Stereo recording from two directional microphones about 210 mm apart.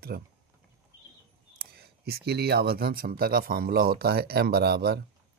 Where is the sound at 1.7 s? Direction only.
50° right (ahead or behind).